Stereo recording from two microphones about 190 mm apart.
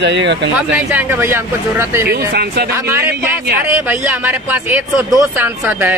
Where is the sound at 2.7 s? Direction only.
10° right (ahead or behind).